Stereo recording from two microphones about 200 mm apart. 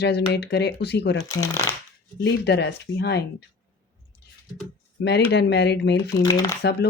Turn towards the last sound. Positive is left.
turn(degrees=55)  # may be behind; listen again after turning